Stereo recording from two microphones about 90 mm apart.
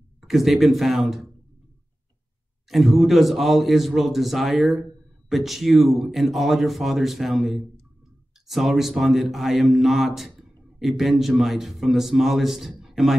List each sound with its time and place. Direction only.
0.2 s speech: centre (ahead or behind)
2.7 s speech: centre (ahead or behind)